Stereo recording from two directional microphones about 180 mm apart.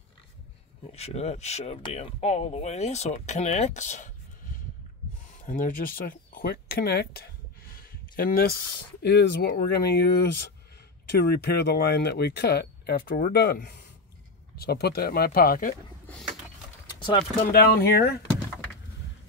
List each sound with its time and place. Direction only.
0.8 s speech: 35° left (ahead or behind)
5.4 s speech: 50° left (ahead or behind)
9.0 s speech: 65° left (ahead or behind)
17.5 s speech: 60° left (ahead or behind)